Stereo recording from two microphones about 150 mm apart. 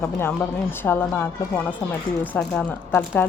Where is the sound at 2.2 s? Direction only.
10° left (ahead or behind).